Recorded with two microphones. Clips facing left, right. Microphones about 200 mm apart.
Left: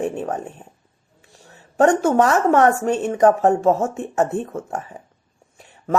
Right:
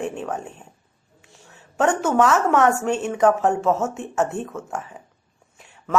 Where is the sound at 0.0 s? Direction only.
35° left (ahead or behind).